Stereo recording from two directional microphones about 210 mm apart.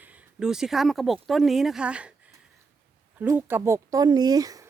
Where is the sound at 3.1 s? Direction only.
10° right (ahead or behind).